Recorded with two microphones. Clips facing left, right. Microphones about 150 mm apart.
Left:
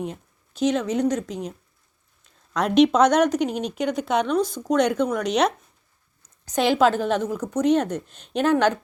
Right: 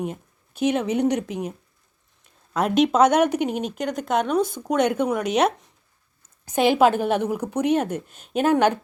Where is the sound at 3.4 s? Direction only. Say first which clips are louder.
Even; 50° right (ahead or behind).